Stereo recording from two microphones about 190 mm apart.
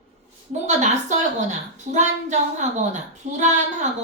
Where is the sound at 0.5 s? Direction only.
40° right (ahead or behind).